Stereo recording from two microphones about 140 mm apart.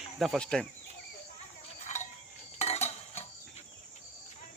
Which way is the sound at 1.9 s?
60° left (ahead or behind).